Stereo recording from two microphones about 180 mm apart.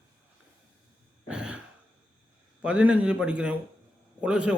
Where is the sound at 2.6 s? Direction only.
5° right (ahead or behind).